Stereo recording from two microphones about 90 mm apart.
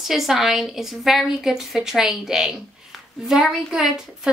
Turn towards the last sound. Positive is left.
turn(degrees=0)  # may be behind; listen again after turning